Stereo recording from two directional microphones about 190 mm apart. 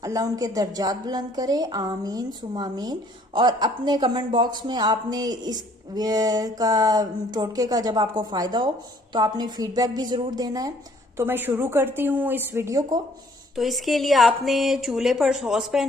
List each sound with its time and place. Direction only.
0.0 s a woman's voice: 20° right (ahead or behind)
13.6 s a woman's voice: centre (ahead or behind)